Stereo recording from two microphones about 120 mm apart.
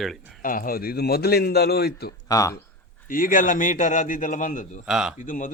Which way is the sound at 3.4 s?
90° left.